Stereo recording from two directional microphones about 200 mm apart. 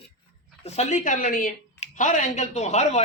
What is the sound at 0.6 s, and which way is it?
Speech, 35° left (ahead or behind).